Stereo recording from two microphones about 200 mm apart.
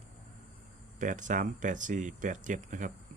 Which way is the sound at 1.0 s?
40° right (ahead or behind).